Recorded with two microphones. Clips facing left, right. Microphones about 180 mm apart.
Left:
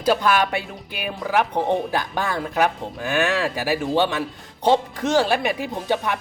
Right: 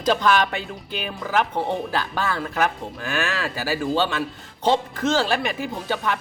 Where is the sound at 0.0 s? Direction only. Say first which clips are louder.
Left 1 dB; 10° left (ahead or behind).